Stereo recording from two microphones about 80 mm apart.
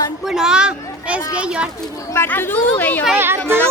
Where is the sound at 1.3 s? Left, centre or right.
Centre.